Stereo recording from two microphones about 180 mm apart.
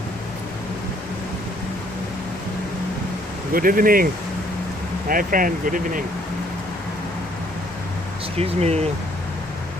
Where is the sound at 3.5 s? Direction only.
50° right (ahead or behind).